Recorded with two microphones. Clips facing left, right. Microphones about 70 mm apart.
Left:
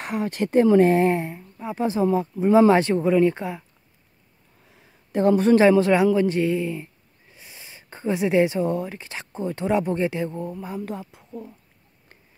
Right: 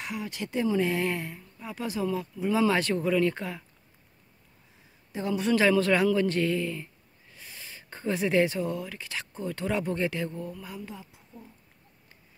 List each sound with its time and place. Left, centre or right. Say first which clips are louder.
0.0 s speech: left 9 dB; left
0.9 s speech: left 9 dB; left
5.1 s speech: left 10 dB; left
5.6 s speech: left 6 dB; left
10.8 s speech: left 10 dB; left